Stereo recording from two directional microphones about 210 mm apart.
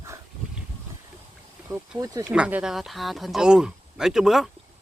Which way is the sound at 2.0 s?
15° right (ahead or behind).